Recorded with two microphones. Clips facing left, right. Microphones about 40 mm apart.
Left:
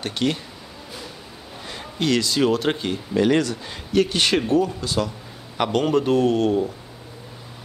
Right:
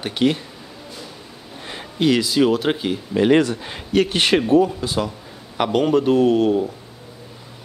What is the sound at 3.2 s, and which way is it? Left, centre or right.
Speech, right.